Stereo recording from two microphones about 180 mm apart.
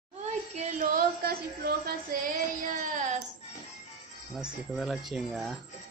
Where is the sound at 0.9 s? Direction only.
55° right (ahead or behind).